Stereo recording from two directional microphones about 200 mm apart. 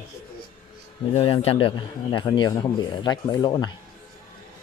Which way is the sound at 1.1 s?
30° left (ahead or behind).